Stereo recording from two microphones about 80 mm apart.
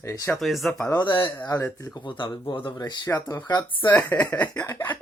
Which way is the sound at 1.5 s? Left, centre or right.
Left.